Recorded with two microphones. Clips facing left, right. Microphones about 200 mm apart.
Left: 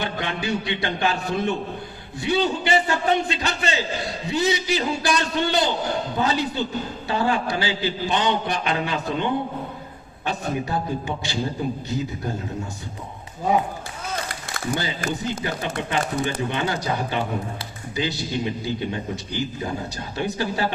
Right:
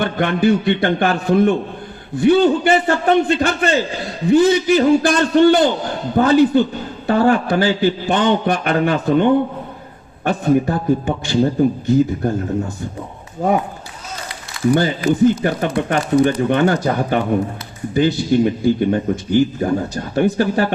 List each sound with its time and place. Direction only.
0.0 s a man's voice: 55° right (ahead or behind)
14.5 s a sound: 45° left (ahead or behind)
15.2 s a man's voice: 50° right (ahead or behind)